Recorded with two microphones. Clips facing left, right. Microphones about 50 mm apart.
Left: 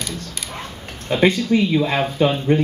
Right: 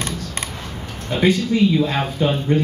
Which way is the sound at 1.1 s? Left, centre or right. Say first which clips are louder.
Left 1 dB; left.